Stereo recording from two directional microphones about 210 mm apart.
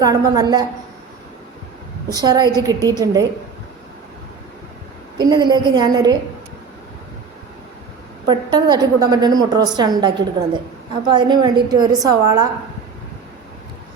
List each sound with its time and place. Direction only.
0.0 s a woman's voice: 15° right (ahead or behind)
2.1 s a woman's voice: 20° right (ahead or behind)
5.1 s a woman's voice: 20° right (ahead or behind)
8.3 s a woman's voice: 20° right (ahead or behind)